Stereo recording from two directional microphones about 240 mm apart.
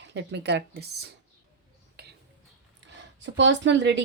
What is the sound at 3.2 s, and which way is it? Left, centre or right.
Speech, right.